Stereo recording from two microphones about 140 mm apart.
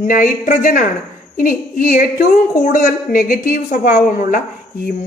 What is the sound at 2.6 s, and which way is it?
A woman's voice, 75° left (ahead or behind).